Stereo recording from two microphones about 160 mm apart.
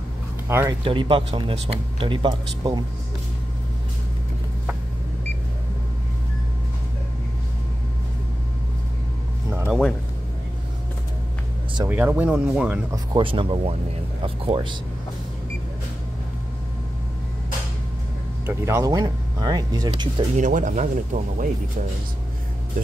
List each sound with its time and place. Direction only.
0.5 s speech: 15° right (ahead or behind)
0.8 s speech: 35° right (ahead or behind)
9.7 s music: 5° left (ahead or behind)
11.9 s speech: 10° right (ahead or behind)
12.9 s speech: 30° right (ahead or behind)
18.4 s speech: 15° right (ahead or behind)
20.3 s speech: 55° right (ahead or behind)